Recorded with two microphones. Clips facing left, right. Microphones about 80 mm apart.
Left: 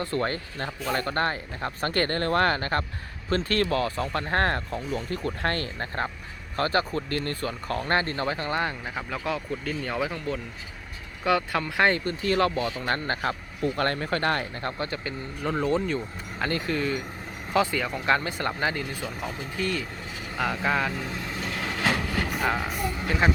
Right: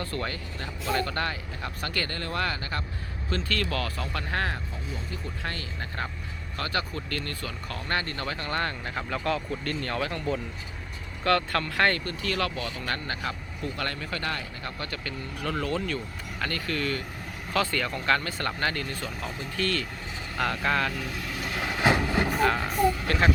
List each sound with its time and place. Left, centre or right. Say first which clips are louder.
0.0 s speech: left 5 dB; left
0.3 s speech: left 4 dB; left
6.6 s speech: left 6 dB; left; by 20.9 s centre
20.9 s speech: left 1 dB; left
21.4 s train: right 3 dB; right
22.4 s speech: right 3 dB; centre